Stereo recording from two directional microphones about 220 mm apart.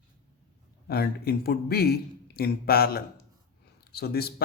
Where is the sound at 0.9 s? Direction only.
45° left (ahead or behind).